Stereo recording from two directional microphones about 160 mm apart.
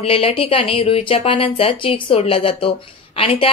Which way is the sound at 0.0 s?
35° left (ahead or behind).